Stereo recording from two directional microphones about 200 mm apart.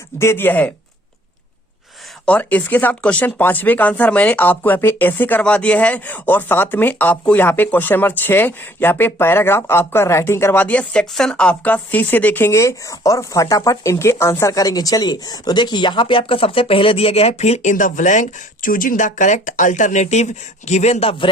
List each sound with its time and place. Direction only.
0.2 s speech: 10° left (ahead or behind)
2.2 s speech: 5° left (ahead or behind); by 21.2 s 30° left (ahead or behind)